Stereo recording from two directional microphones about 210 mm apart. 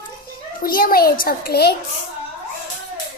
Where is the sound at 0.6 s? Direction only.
45° left (ahead or behind).